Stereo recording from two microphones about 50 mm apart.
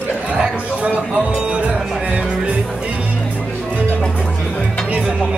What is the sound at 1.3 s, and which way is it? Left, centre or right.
Music, right.